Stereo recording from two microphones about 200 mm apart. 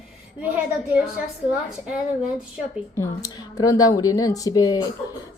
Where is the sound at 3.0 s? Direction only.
15° left (ahead or behind).